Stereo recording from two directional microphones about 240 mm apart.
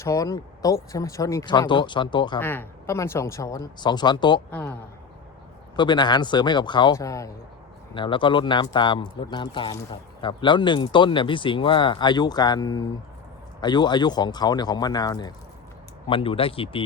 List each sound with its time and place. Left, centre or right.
0.0 s speech: centre
2.4 s speech: centre
5.7 s speech: centre